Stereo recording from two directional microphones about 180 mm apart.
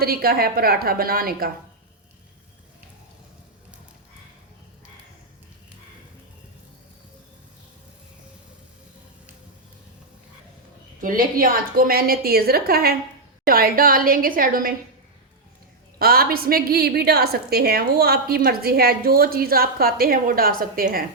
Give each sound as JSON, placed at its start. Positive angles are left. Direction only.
{"t": 0.0, "sound": "a woman's voice", "side_deg": -55}
{"t": 11.0, "sound": "a woman's voice", "side_deg": -50}
{"t": 16.0, "sound": "a woman's voice", "side_deg": -55}